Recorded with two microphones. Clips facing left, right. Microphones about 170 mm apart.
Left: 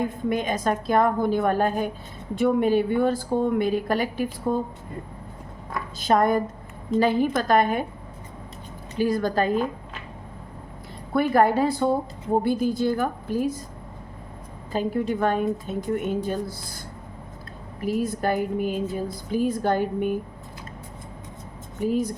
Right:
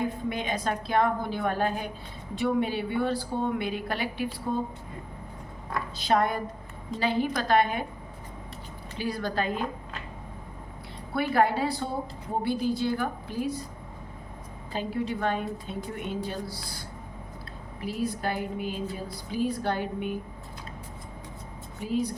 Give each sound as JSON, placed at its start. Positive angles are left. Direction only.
{"t": 0.3, "sound": "a woman's voice", "side_deg": 45}
{"t": 6.0, "sound": "a woman's voice", "side_deg": 45}
{"t": 9.0, "sound": "a woman's voice", "side_deg": 45}
{"t": 11.1, "sound": "a woman's voice", "side_deg": 50}
{"t": 14.7, "sound": "a woman's voice", "side_deg": 45}
{"t": 21.8, "sound": "a woman's voice", "side_deg": 45}